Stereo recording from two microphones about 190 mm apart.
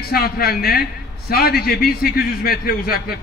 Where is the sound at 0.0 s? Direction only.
55° left (ahead or behind).